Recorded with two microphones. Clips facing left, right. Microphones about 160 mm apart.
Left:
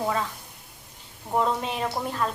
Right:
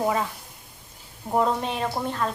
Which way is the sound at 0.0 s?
15° right (ahead or behind).